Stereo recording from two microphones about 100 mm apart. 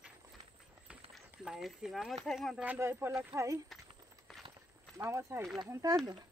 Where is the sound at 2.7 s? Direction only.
25° right (ahead or behind).